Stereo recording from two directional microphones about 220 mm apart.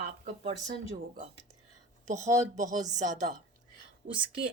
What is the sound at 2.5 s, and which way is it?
Speech, 35° right (ahead or behind).